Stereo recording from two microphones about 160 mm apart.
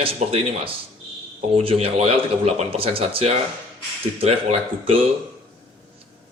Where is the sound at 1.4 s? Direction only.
40° right (ahead or behind).